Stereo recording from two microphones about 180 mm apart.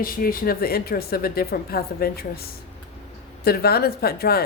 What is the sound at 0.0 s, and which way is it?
Speech, 55° left (ahead or behind).